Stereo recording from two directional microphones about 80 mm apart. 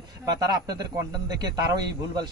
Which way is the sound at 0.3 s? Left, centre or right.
Right.